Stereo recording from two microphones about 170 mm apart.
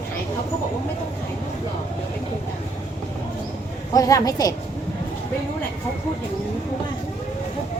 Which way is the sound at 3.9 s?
20° left (ahead or behind).